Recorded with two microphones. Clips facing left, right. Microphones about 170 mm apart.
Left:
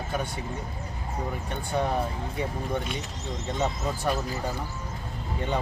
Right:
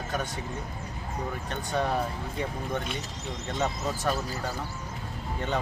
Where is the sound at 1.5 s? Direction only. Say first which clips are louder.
Left 1 dB; 10° left (ahead or behind).